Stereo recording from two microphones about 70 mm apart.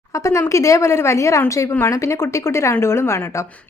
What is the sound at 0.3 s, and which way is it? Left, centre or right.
A woman's voice, left.